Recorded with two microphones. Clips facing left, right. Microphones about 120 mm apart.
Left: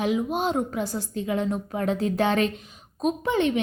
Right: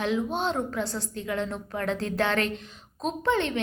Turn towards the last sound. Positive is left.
turn(degrees=15)  # may be behind; listen again after turning